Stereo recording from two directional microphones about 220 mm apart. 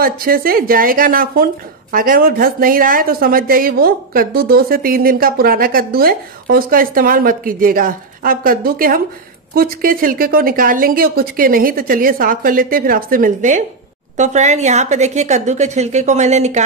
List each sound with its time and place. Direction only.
0.0 s speech: 40° right (ahead or behind)